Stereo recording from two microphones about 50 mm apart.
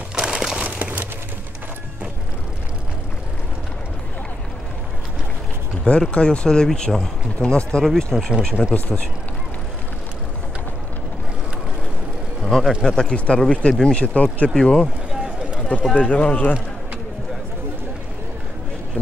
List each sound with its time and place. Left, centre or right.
0.1 s a sound: centre
0.7 s a sound: right
5.9 s speech: centre
8.1 s speech: centre
8.7 s speech: left
12.4 s speech: centre
13.9 s speech: left
14.5 s speech: centre
15.9 s speech: left